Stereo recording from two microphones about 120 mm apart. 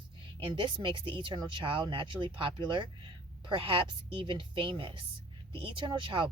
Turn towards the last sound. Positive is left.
turn(degrees=-45)  # may be behind; listen again after turning